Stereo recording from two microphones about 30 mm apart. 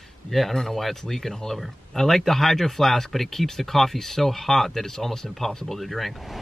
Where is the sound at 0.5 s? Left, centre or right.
Centre.